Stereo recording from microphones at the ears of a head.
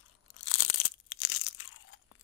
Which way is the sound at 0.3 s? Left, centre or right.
Left.